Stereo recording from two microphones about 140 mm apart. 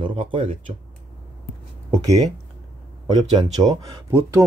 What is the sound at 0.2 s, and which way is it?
Speech, 40° right (ahead or behind).